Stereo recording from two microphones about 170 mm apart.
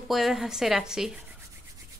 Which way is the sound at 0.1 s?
Centre (ahead or behind).